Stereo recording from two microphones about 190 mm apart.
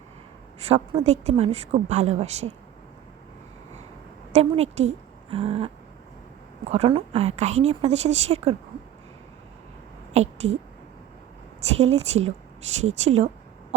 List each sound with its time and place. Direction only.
0.7 s a woman's voice: 35° right (ahead or behind)
4.3 s a woman's voice: 35° right (ahead or behind)
10.1 s speech: 35° right (ahead or behind)
11.8 s a woman's voice: 35° right (ahead or behind)